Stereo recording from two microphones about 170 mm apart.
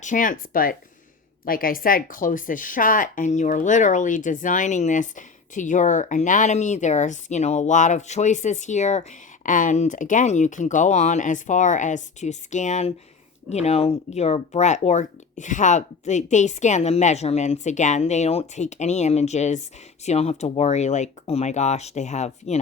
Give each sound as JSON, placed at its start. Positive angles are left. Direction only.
{"t": 0.0, "sound": "speech", "side_deg": 50}